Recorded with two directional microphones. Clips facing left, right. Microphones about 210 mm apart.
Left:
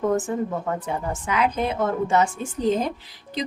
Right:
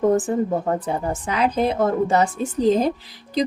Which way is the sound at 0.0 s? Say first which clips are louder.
Right 4 dB; 35° right (ahead or behind).